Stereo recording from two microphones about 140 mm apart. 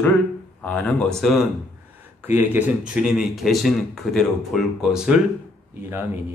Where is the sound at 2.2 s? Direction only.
15° right (ahead or behind).